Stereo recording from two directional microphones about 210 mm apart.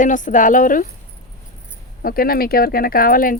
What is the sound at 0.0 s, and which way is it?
Speech, 40° left (ahead or behind).